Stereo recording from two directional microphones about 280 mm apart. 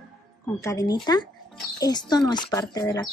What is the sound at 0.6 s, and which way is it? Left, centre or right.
Speech, centre.